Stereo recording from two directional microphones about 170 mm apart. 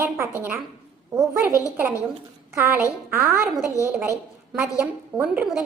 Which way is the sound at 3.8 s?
20° left (ahead or behind).